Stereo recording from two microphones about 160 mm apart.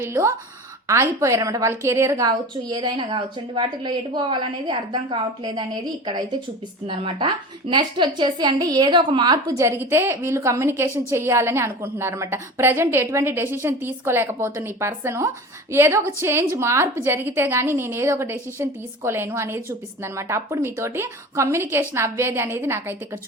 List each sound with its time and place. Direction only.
0.0 s a woman's voice: 15° right (ahead or behind)
6.8 s a woman's voice: 30° right (ahead or behind); by 23.0 s 15° right (ahead or behind)